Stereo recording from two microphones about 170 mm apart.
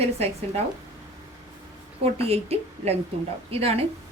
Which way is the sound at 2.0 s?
35° right (ahead or behind).